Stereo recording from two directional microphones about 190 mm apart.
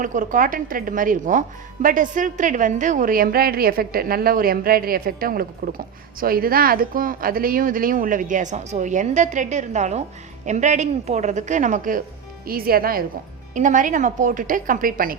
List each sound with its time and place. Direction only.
0.0 s a woman's voice: 45° right (ahead or behind)